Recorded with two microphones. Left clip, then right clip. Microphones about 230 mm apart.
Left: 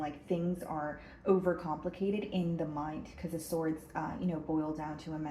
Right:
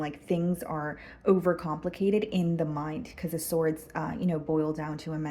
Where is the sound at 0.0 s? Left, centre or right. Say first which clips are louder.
Right 5 dB; right.